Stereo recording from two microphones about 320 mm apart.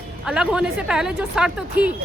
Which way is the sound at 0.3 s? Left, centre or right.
Centre.